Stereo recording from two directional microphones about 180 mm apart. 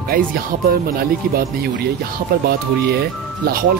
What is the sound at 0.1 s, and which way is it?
Speech, 55° right (ahead or behind).